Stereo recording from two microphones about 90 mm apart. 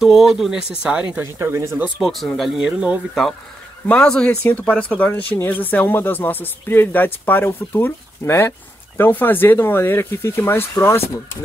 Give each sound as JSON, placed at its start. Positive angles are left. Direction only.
{"t": 0.0, "sound": "speech", "side_deg": -5}
{"t": 1.2, "sound": "speech", "side_deg": -30}
{"t": 2.0, "sound": "speech", "side_deg": 0}
{"t": 3.8, "sound": "speech", "side_deg": 10}